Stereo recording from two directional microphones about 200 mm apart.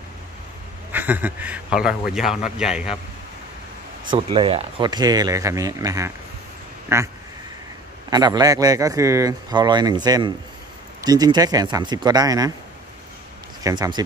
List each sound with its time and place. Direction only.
0.9 s a man's voice: 10° right (ahead or behind)
4.1 s speech: 25° right (ahead or behind)
8.1 s speech: 20° right (ahead or behind)
13.6 s speech: 20° right (ahead or behind)